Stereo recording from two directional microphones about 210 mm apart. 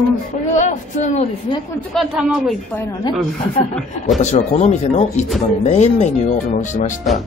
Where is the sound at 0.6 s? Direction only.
35° left (ahead or behind).